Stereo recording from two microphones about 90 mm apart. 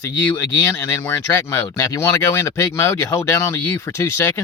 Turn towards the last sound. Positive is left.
turn(degrees=30)  # may be behind; listen again after turning